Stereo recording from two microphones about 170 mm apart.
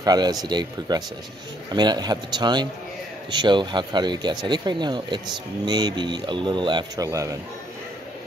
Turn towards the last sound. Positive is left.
turn(degrees=-20)  # may be behind; listen again after turning